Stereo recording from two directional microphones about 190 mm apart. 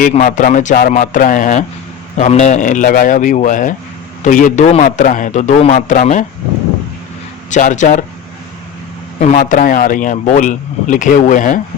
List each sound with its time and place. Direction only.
0.1 s a man's voice: 40° left (ahead or behind)
7.5 s a man's voice: 40° left (ahead or behind)
9.2 s speech: 45° left (ahead or behind)